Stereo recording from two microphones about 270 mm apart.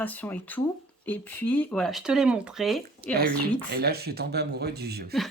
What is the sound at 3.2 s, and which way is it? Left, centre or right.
Speech, right.